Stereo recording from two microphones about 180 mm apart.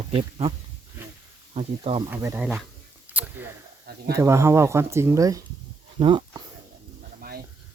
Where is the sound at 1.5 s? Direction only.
35° right (ahead or behind).